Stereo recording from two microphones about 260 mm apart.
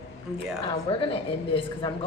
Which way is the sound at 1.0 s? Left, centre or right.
Centre.